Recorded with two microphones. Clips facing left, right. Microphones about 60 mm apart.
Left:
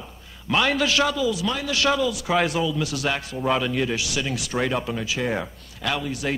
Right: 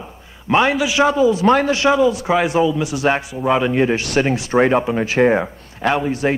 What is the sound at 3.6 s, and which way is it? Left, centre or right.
Speech, right.